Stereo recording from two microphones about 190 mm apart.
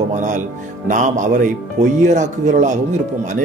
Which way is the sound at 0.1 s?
40° right (ahead or behind).